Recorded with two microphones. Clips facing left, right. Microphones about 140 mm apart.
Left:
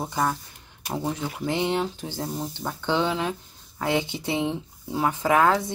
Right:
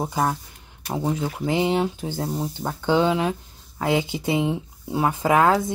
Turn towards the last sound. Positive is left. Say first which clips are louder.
# right 2 dB
turn(degrees=-10)  # may be behind; listen again after turning